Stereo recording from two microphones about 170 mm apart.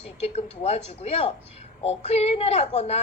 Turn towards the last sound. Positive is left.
turn(degrees=40)  # may be behind; listen again after turning